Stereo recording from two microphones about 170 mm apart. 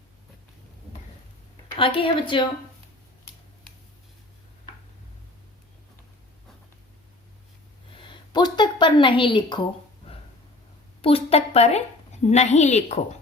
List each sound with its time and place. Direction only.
1.7 s a woman's voice: 30° left (ahead or behind)
7.9 s a sound: 30° left (ahead or behind)
11.0 s a woman's voice: 35° left (ahead or behind)